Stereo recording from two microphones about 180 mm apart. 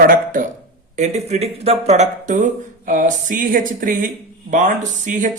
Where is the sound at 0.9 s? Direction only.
40° right (ahead or behind).